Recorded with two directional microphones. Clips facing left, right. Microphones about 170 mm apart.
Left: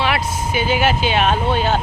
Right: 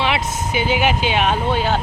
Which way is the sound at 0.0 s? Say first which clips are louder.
Left 1 dB; 20° right (ahead or behind).